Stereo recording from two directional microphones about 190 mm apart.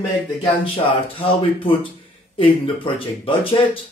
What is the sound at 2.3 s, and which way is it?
Speech, 25° left (ahead or behind).